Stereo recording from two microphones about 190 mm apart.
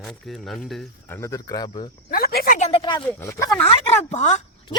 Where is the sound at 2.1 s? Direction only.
55° left (ahead or behind).